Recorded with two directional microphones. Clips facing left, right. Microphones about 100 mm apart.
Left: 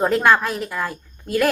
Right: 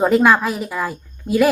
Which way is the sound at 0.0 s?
5° right (ahead or behind).